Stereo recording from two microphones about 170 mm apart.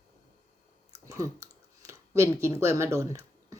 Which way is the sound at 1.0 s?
20° right (ahead or behind).